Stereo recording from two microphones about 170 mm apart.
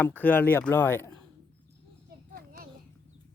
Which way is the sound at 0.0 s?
10° left (ahead or behind).